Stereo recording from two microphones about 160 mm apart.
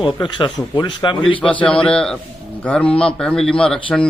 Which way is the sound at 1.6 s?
5° left (ahead or behind).